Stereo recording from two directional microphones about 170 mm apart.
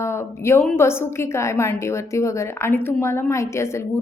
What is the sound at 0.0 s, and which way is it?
A woman's voice, 15° left (ahead or behind).